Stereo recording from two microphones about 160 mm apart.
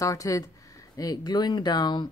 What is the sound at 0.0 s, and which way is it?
Speech, 20° left (ahead or behind).